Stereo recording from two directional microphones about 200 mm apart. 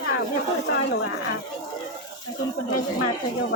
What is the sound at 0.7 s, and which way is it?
Speech, 65° left (ahead or behind).